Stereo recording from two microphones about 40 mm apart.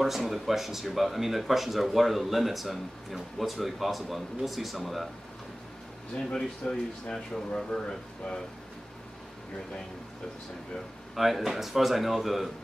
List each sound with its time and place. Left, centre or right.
0.0 s speech: centre
6.1 s speech: centre
11.1 s speech: centre